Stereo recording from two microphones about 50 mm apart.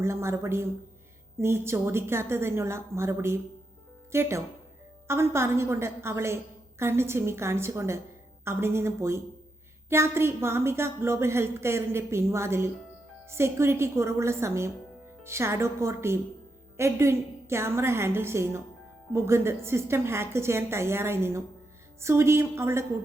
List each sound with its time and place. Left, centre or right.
0.0 s a woman's voice: right
4.1 s a woman's voice: right